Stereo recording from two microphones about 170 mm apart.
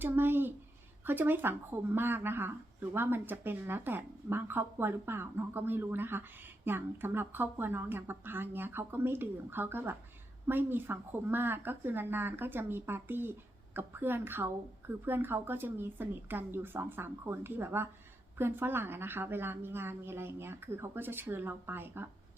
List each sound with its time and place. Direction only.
0.0 s speech: 10° right (ahead or behind)